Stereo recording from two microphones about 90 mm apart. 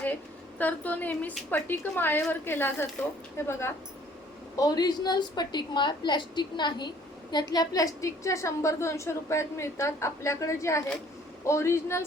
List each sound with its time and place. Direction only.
0.6 s speech: 20° left (ahead or behind)
4.5 s a woman's voice: 45° left (ahead or behind); by 12.0 s 30° left (ahead or behind)